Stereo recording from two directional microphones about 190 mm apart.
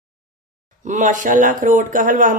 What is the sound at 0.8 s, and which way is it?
A woman's voice, 40° right (ahead or behind).